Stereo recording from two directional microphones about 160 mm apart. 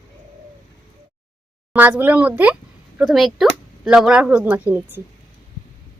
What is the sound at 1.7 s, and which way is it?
Speech, 10° right (ahead or behind).